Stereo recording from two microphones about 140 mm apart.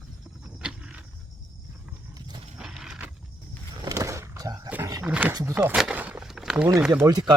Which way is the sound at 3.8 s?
25° right (ahead or behind).